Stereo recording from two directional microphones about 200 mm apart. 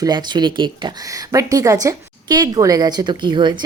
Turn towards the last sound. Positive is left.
turn(degrees=-20)  # may be behind; listen again after turning